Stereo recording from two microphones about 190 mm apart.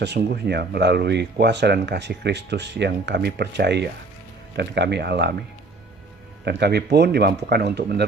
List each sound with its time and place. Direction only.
0.0 s speech: 60° right (ahead or behind)
6.4 s speech: 60° right (ahead or behind)